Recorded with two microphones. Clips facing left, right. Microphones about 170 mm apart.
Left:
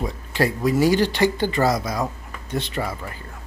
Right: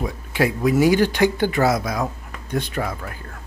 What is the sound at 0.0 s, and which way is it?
Speech, centre (ahead or behind).